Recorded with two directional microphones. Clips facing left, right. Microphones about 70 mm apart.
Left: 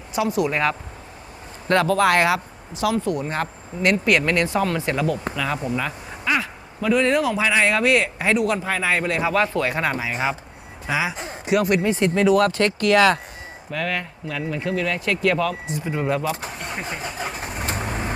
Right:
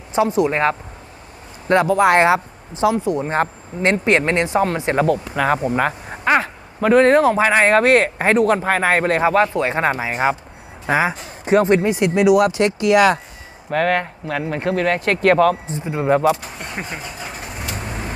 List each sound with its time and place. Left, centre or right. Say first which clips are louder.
0.1 s speech: right 5 dB; right
1.6 s speech: right 3 dB; right
5.3 s speech: right 7 dB; right
11.4 s speech: right 5 dB; right
11.9 s speech: right 3 dB; centre
13.7 s speech: right 8 dB; right
15.7 s speech: right 5 dB; right